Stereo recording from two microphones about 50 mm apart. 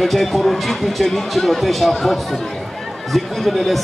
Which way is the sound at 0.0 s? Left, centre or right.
Centre.